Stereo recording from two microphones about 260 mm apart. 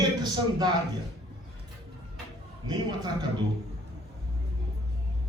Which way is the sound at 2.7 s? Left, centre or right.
Centre.